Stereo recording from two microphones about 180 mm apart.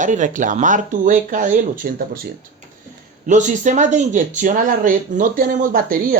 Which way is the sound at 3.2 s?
45° right (ahead or behind).